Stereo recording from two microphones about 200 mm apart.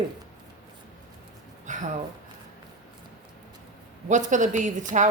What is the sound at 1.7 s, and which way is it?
Speech, 40° right (ahead or behind).